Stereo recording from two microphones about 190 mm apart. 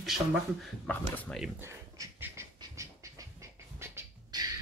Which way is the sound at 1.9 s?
15° right (ahead or behind).